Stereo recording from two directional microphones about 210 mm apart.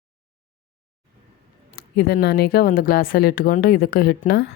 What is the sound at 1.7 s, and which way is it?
A woman's voice, 45° left (ahead or behind).